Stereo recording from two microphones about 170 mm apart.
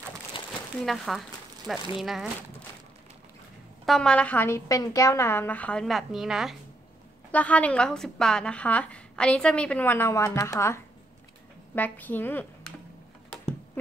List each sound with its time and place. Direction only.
0.3 s a sound: 30° left (ahead or behind)
0.8 s speech: centre (ahead or behind)
3.8 s a woman's voice: 5° left (ahead or behind)
7.2 s a woman's voice: 10° left (ahead or behind)